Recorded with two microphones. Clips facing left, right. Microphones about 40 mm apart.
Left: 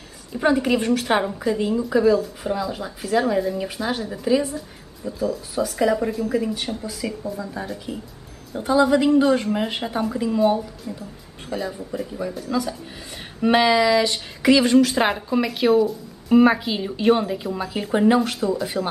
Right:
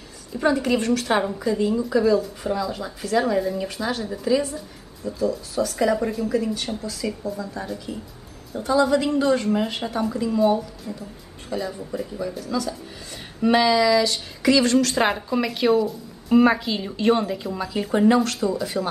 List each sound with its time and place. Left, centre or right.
0.3 s speech: centre
8.5 s speech: centre